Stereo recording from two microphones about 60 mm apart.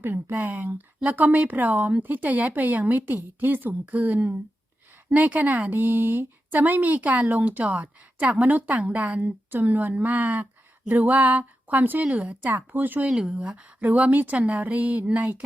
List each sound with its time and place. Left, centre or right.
0.0 s speech: right
13.1 s speech: centre